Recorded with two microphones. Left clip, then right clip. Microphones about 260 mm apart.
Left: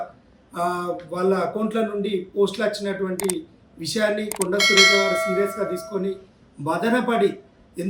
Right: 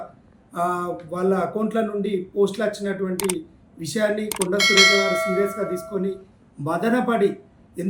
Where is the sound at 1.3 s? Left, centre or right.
Centre.